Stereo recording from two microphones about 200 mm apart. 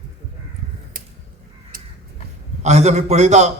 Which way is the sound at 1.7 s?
45° right (ahead or behind).